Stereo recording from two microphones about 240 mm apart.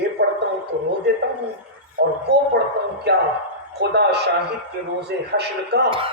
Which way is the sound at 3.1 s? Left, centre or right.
Right.